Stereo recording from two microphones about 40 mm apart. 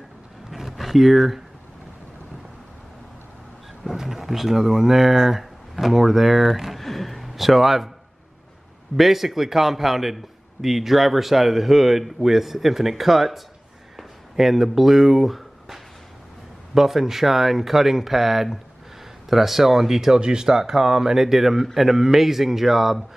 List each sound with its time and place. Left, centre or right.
0.5 s a sound: centre
3.8 s speech: centre
8.9 s a man's voice: centre
20.5 s speech: centre